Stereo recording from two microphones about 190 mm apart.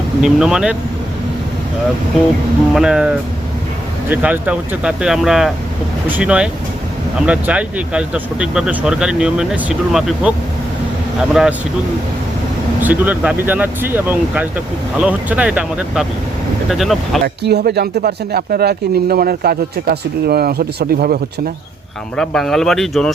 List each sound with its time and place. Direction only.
0.2 s speech: 5° right (ahead or behind)
2.7 s speech: 5° right (ahead or behind)
12.8 s speech: 10° right (ahead or behind)
17.2 s speech: 60° right (ahead or behind)
22.2 s speech: centre (ahead or behind)